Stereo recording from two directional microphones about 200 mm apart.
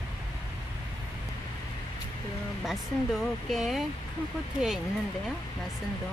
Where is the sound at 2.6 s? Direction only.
Centre (ahead or behind).